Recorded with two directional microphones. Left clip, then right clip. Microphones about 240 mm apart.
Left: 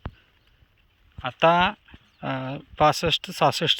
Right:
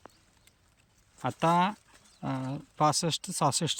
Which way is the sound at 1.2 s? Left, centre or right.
Centre.